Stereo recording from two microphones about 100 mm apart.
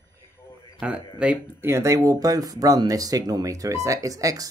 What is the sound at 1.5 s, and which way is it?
Speech, 25° right (ahead or behind).